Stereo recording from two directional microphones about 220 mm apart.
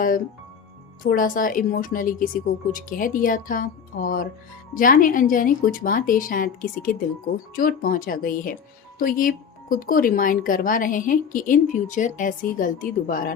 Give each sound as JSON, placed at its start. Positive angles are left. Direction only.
{"t": 1.0, "sound": "speech", "side_deg": 40}